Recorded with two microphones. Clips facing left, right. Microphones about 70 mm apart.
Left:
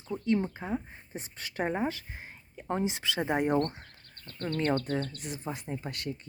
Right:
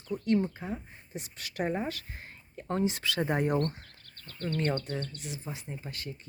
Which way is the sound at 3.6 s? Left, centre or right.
Left.